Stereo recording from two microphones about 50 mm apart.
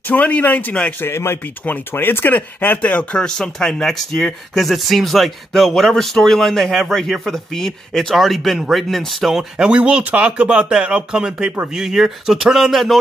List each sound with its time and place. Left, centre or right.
0.1 s speech: left
1.0 s speech: left
1.7 s speech: left
3.2 s speech: centre
9.6 s speech: right; by 13.0 s centre